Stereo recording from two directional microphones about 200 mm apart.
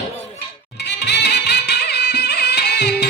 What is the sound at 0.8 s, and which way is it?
Music, 55° left (ahead or behind).